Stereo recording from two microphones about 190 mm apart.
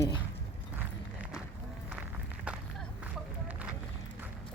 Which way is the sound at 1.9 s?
5° right (ahead or behind).